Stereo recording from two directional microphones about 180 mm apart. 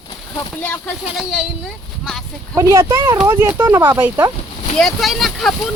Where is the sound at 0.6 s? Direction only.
10° left (ahead or behind).